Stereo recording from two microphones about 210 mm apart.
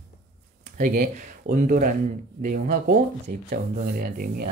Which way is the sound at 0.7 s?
35° right (ahead or behind).